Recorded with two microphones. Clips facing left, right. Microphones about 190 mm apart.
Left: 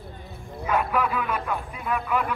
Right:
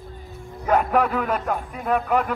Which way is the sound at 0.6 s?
45° right (ahead or behind).